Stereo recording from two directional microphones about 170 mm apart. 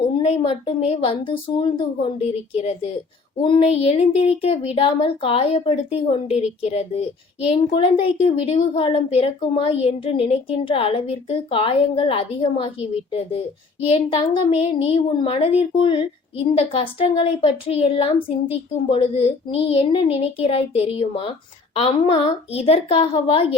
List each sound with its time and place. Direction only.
0.2 s a woman's voice: 35° left (ahead or behind)